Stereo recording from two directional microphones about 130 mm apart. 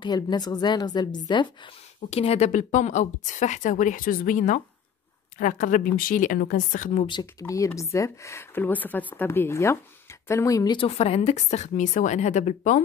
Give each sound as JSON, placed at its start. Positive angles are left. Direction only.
{"t": 0.0, "sound": "a woman's voice", "side_deg": 30}
{"t": 2.0, "sound": "a woman's voice", "side_deg": 50}
{"t": 2.5, "sound": "a woman's voice", "side_deg": 70}
{"t": 7.1, "sound": "speech", "side_deg": 30}
{"t": 10.8, "sound": "a woman's voice", "side_deg": 50}